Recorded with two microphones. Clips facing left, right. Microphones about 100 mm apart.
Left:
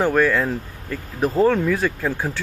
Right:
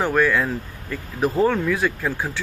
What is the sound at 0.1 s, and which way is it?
Speech, 35° left (ahead or behind).